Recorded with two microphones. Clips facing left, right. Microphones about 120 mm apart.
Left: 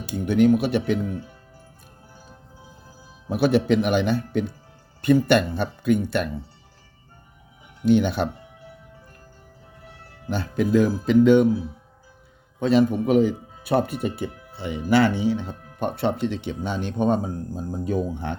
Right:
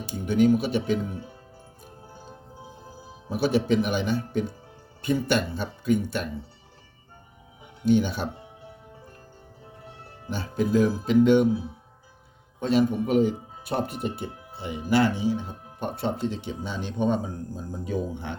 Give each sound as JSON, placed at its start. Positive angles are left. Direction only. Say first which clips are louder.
{"t": 0.0, "sound": "speech", "louder": "left 3 dB", "side_deg": 65}
{"t": 3.2, "sound": "speech", "louder": "left 4 dB", "side_deg": 65}
{"t": 7.9, "sound": "speech", "louder": "left 3 dB", "side_deg": 65}
{"t": 10.2, "sound": "speech", "louder": "left 3 dB", "side_deg": 70}
{"t": 12.5, "sound": "a man's voice", "louder": "left 3 dB", "side_deg": 90}
{"t": 14.3, "sound": "music", "louder": "left 1 dB", "side_deg": -25}
{"t": 14.5, "sound": "speech", "louder": "left 3 dB", "side_deg": 90}